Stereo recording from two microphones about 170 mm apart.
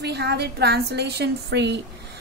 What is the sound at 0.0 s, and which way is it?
A woman's voice, 75° right (ahead or behind).